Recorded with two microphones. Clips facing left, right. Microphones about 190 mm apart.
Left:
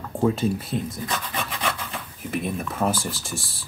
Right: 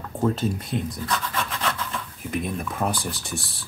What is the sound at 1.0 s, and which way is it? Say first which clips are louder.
Scratch: right 1 dB; 15° left (ahead or behind).